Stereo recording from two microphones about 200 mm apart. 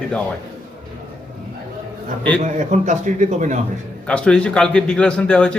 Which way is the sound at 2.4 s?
40° right (ahead or behind).